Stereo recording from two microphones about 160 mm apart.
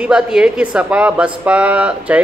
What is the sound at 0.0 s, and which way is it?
Speech, 5° right (ahead or behind).